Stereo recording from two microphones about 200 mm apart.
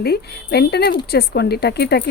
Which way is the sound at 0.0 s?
55° left (ahead or behind).